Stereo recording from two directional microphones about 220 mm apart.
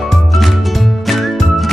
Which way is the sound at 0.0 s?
Centre (ahead or behind).